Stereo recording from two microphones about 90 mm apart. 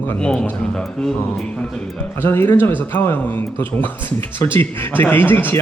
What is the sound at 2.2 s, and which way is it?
Speech, 25° left (ahead or behind).